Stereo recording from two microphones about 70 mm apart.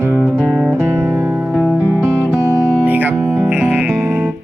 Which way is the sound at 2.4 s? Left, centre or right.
Left.